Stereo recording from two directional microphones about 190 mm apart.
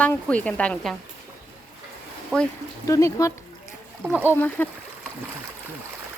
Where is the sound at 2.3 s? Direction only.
5° left (ahead or behind).